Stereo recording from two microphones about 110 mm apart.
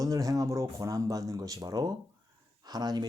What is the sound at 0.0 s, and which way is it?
Speech, 30° right (ahead or behind).